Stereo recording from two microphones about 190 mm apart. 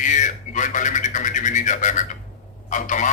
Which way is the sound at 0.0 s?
40° left (ahead or behind).